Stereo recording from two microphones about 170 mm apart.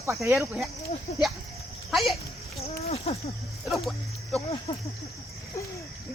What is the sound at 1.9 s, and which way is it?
Speech, centre (ahead or behind).